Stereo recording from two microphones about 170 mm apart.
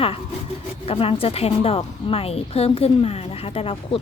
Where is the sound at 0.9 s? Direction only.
35° left (ahead or behind).